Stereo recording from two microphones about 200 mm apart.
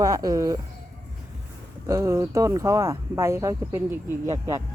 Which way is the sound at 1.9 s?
15° right (ahead or behind).